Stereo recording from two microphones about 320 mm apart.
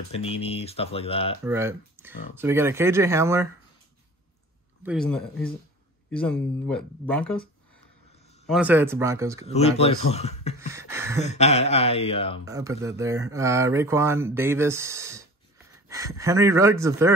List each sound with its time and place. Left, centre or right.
0.1 s speech: centre
1.4 s speech: centre
4.8 s speech: centre
8.5 s speech: centre
9.5 s speech: centre
10.7 s speech: centre
11.1 s speech: left
12.4 s speech: centre